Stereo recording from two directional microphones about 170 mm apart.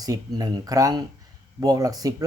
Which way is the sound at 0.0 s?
20° right (ahead or behind).